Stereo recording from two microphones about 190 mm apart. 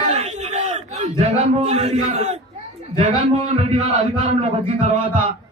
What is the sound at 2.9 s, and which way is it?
Speech, 40° right (ahead or behind).